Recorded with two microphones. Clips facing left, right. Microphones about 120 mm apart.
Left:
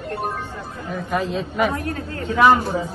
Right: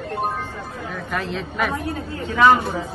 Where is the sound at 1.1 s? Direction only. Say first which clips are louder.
Left 4 dB; 5° left (ahead or behind).